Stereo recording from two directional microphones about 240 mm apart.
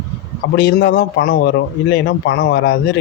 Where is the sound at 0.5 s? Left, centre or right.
Left.